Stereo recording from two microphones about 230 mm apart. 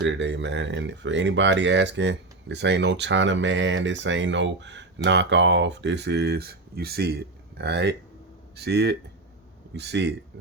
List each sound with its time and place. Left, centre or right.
0.0 s speech: right